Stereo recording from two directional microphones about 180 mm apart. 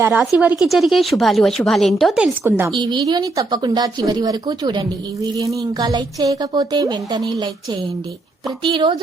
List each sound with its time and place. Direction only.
0.0 s speech: 10° right (ahead or behind)
2.7 s speech: 25° right (ahead or behind)